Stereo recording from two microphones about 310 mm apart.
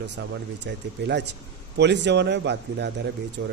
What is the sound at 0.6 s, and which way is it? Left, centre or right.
Speech, right.